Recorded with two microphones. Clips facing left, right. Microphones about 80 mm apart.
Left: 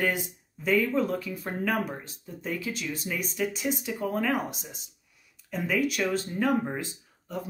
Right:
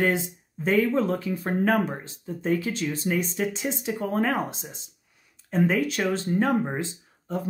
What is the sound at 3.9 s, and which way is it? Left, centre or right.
Speech, right.